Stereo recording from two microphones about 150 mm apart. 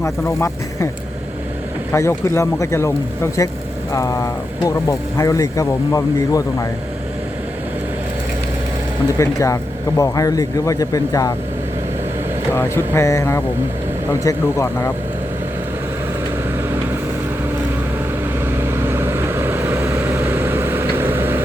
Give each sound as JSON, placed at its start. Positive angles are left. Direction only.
{"t": 0.0, "sound": "speech", "side_deg": 20}
{"t": 1.9, "sound": "speech", "side_deg": 20}
{"t": 9.1, "sound": "speech", "side_deg": 20}
{"t": 12.5, "sound": "speech", "side_deg": 15}
{"t": 18.5, "sound": "vehicle", "side_deg": -15}